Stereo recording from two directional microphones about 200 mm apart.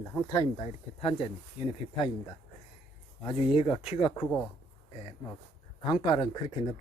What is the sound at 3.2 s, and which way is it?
Speech, 25° left (ahead or behind).